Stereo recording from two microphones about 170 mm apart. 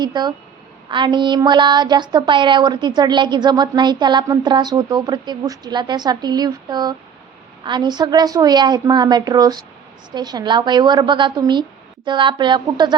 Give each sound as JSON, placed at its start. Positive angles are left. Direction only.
{"t": 0.0, "sound": "a woman's voice", "side_deg": -25}